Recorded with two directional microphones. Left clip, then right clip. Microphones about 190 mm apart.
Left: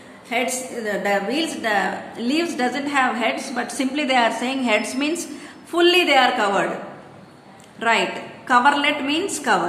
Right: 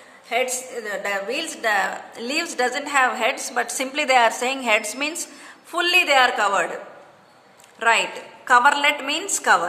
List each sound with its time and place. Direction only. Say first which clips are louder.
0.3 s a woman's voice: even; 35° right (ahead or behind)
7.8 s a woman's voice: even; 35° right (ahead or behind)